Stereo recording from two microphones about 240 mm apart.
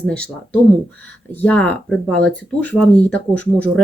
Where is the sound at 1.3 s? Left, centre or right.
Centre.